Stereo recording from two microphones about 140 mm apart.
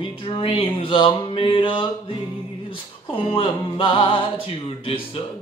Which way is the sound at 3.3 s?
40° left (ahead or behind).